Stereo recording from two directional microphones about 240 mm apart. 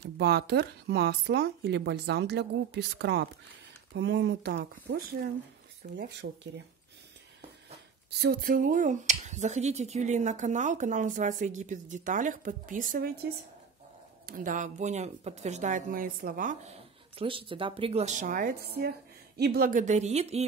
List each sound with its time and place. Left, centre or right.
0.0 s speech: right
6.2 s speech: right
8.2 s speech: right
17.2 s a woman's voice: right